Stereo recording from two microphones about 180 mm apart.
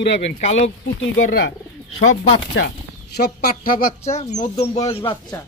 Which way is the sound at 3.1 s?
60° left (ahead or behind).